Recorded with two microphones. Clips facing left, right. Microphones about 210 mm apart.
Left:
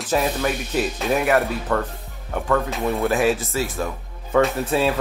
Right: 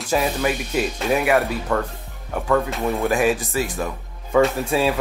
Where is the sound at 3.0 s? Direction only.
15° right (ahead or behind).